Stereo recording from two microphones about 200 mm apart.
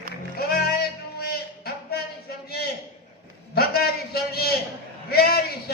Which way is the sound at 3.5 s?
50° left (ahead or behind).